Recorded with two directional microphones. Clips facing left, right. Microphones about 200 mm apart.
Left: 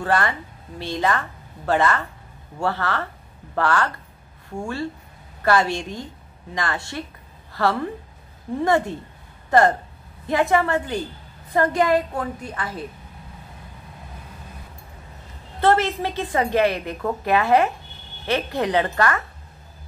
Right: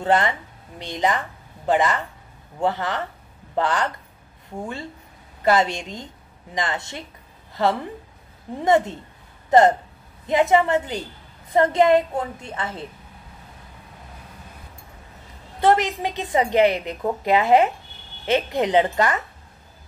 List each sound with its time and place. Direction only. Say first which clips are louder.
0.0 s a woman's voice: right 2 dB; 20° right (ahead or behind)
5.4 s a woman's voice: even; 20° right (ahead or behind)
15.6 s a woman's voice: even; 15° right (ahead or behind)